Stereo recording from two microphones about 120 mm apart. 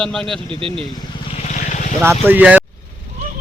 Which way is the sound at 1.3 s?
65° left (ahead or behind).